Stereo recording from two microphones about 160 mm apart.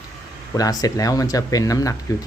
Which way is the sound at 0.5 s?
25° left (ahead or behind).